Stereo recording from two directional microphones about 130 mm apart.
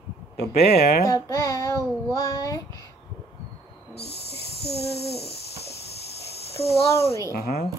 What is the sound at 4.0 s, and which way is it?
Owl, 55° left (ahead or behind).